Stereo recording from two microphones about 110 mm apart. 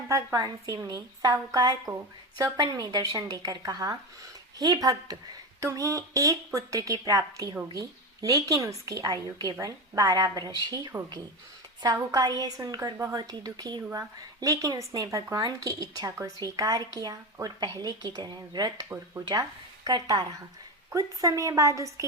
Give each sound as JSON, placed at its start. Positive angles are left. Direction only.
{"t": 0.3, "sound": "speech", "side_deg": -35}
{"t": 12.1, "sound": "a woman's voice", "side_deg": -35}